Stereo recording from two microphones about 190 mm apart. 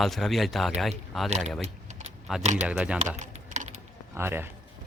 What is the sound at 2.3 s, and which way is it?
Speech, centre (ahead or behind).